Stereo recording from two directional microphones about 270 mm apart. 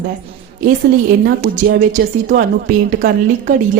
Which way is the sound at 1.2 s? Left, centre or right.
Right.